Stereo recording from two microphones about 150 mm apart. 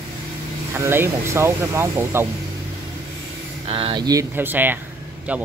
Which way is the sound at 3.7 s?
35° right (ahead or behind).